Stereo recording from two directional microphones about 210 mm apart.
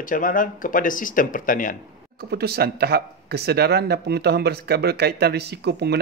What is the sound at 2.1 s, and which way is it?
Speech, 50° right (ahead or behind).